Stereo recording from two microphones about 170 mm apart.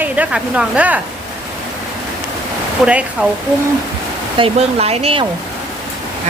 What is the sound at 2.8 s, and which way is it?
Speech, 5° right (ahead or behind).